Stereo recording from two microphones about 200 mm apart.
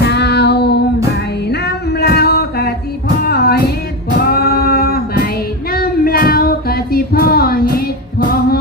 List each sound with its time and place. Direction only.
0.0 s child singing: 55° left (ahead or behind)
1.5 s music: 55° left (ahead or behind)
5.7 s child singing: 50° left (ahead or behind)